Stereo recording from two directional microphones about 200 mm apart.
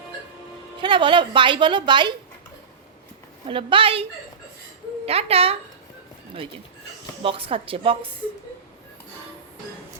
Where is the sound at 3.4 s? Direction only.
25° right (ahead or behind).